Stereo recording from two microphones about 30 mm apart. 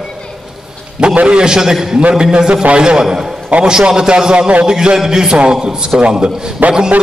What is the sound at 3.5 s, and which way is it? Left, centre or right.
Speech, right.